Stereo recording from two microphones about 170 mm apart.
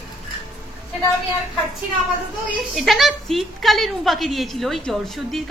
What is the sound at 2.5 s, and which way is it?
A woman's voice, centre (ahead or behind).